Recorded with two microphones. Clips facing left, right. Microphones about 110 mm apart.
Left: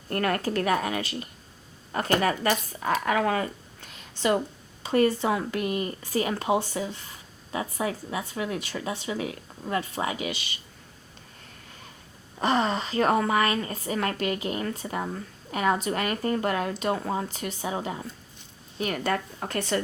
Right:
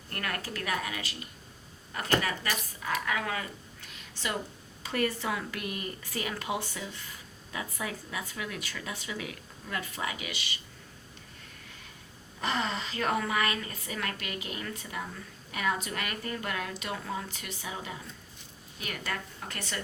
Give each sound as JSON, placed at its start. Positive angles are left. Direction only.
{"t": 0.1, "sound": "a woman's voice", "side_deg": 40}
{"t": 2.2, "sound": "a woman's voice", "side_deg": 40}
{"t": 12.4, "sound": "a woman's voice", "side_deg": 35}